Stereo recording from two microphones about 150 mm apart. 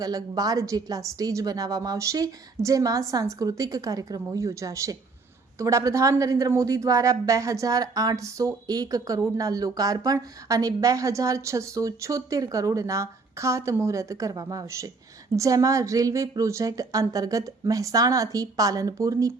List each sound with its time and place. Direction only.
0.0 s speech: 25° right (ahead or behind)